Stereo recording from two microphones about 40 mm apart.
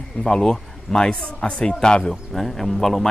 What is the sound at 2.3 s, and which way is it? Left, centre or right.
Speech, centre.